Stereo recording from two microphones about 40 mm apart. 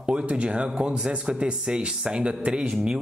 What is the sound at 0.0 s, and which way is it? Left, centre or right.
Speech, right.